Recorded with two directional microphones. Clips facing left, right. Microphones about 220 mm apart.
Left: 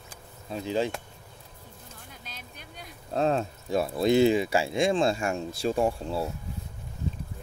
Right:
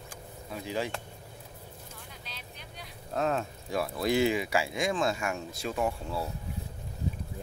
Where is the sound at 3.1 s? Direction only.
30° left (ahead or behind).